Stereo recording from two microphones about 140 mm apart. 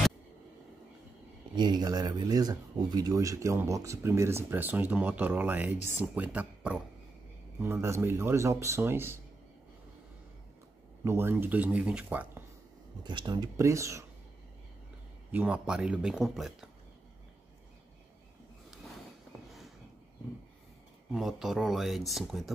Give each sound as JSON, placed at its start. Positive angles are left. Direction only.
{"t": 1.5, "sound": "speech", "side_deg": -30}
{"t": 11.1, "sound": "speech", "side_deg": -15}
{"t": 13.0, "sound": "speech", "side_deg": -30}
{"t": 15.3, "sound": "speech", "side_deg": -10}
{"t": 21.1, "sound": "speech", "side_deg": 0}